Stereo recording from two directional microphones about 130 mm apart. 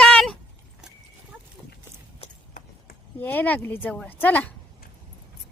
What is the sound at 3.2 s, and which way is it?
A woman's voice, 15° left (ahead or behind).